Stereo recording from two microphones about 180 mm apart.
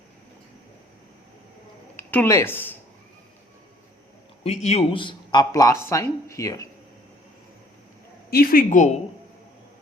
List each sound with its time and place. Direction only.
2.0 s speech: 10° left (ahead or behind)
4.4 s a man's voice: 40° left (ahead or behind); by 6.7 s 15° left (ahead or behind)
8.3 s speech: 55° left (ahead or behind)